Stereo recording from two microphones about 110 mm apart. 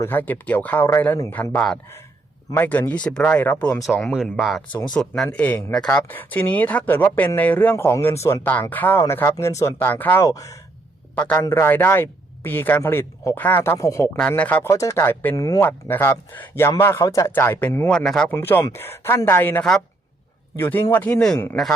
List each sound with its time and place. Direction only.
0.0 s speech: 15° left (ahead or behind)
9.8 s speech: 15° left (ahead or behind)
10.2 s speech: 30° left (ahead or behind)
11.1 s a man's voice: 10° left (ahead or behind)
11.3 s speech: 25° left (ahead or behind)
14.2 s speech: 15° left (ahead or behind)
14.7 s speech: 30° left (ahead or behind)
15.4 s speech: 30° left (ahead or behind)
15.9 s speech: 20° left (ahead or behind)
17.3 s speech: 20° left (ahead or behind)
17.8 s speech: 5° left (ahead or behind)
18.3 s speech: 20° left (ahead or behind)